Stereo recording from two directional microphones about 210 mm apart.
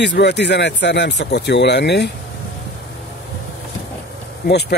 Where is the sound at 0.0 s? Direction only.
55° left (ahead or behind).